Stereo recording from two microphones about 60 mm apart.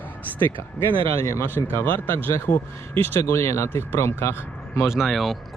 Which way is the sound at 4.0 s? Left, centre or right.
Left.